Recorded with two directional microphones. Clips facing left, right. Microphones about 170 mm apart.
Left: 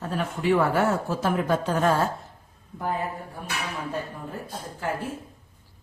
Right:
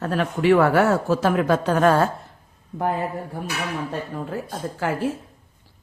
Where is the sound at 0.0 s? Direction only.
80° right.